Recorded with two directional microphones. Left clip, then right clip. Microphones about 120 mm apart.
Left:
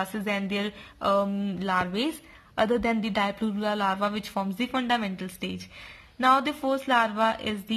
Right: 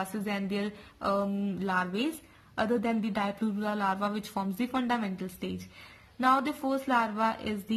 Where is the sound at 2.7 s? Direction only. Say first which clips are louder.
Left 4 dB; 35° left (ahead or behind).